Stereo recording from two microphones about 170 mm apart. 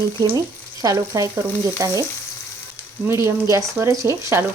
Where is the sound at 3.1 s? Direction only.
15° right (ahead or behind).